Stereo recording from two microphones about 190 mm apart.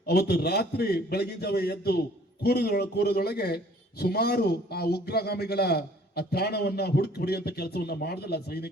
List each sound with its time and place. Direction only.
0.0 s a man's voice: 55° left (ahead or behind)